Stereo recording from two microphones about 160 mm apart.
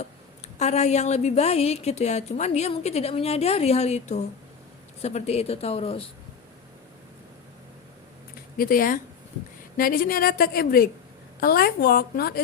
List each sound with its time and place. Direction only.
0.0 s a woman's voice: 45° left (ahead or behind)
8.5 s a woman's voice: 60° left (ahead or behind)